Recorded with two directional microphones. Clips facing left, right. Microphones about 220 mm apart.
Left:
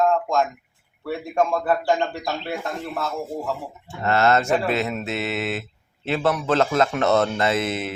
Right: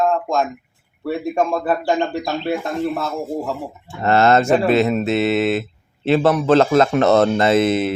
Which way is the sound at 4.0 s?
30° right (ahead or behind).